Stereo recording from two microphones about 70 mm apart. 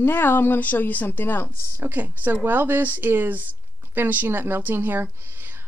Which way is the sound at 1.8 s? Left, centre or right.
Right.